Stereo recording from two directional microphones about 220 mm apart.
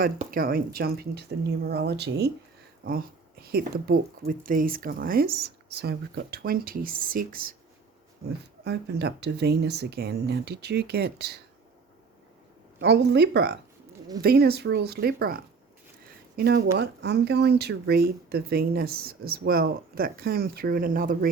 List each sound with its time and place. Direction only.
0.0 s speech: 40° right (ahead or behind)
8.6 s speech: 50° right (ahead or behind)
12.8 s speech: 50° right (ahead or behind)